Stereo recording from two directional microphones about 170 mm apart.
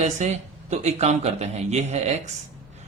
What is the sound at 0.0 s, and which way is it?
Speech, 40° right (ahead or behind).